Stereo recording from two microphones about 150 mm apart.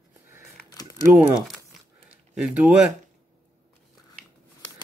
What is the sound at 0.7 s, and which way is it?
Crumpling, 25° left (ahead or behind).